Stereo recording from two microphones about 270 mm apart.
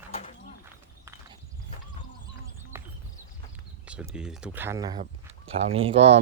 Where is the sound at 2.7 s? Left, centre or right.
Centre.